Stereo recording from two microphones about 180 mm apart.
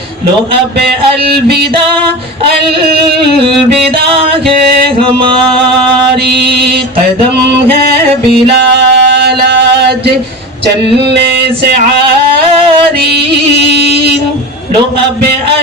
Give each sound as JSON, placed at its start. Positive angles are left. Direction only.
{"t": 1.2, "sound": "mantra", "side_deg": -60}
{"t": 4.9, "sound": "a sound", "side_deg": -30}
{"t": 6.2, "sound": "mantra", "side_deg": -65}
{"t": 8.4, "sound": "music", "side_deg": -70}